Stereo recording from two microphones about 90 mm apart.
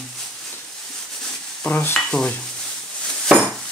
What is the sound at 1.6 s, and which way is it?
Stir, 20° left (ahead or behind).